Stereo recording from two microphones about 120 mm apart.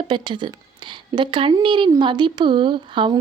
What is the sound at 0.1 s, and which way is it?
Speech, 40° right (ahead or behind).